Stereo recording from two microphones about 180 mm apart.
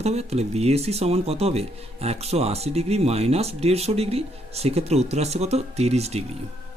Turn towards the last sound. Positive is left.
turn(degrees=-35)  # may be behind; listen again after turning